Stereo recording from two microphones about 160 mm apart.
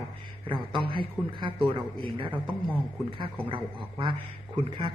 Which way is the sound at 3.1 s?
35° right (ahead or behind).